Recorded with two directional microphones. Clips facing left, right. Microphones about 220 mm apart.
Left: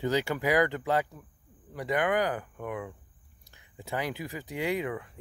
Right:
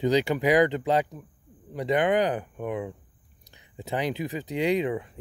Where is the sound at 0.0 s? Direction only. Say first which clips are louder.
Right 5 dB; 15° right (ahead or behind).